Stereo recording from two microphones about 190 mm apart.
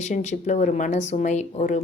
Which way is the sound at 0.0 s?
40° left (ahead or behind).